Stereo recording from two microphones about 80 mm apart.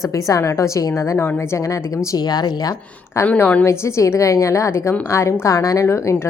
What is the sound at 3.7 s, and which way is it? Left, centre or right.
A woman's voice, left.